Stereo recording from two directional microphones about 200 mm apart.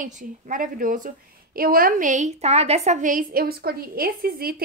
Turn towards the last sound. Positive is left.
turn(degrees=-50)  # may be behind; listen again after turning